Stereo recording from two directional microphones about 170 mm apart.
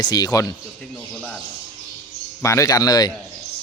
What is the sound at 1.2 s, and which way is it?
Speech, 5° left (ahead or behind).